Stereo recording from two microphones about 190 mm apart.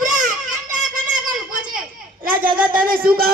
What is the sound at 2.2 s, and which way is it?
Speech, 50° right (ahead or behind).